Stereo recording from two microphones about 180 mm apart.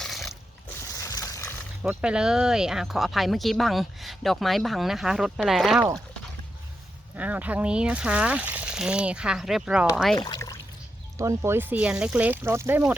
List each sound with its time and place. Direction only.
0.0 s a sound: centre (ahead or behind)
0.8 s a sound: 15° left (ahead or behind)
1.8 s speech: 5° right (ahead or behind)
7.2 s speech: 10° right (ahead or behind)
10.2 s pour: 20° left (ahead or behind)
11.2 s speech: 15° right (ahead or behind)